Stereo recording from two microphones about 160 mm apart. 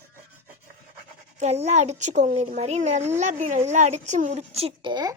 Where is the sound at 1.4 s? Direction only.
45° right (ahead or behind).